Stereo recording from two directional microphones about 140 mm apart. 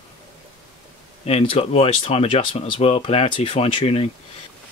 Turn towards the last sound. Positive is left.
turn(degrees=40)  # may be behind; listen again after turning